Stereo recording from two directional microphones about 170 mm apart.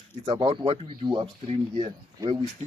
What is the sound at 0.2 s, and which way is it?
Speech, 25° right (ahead or behind).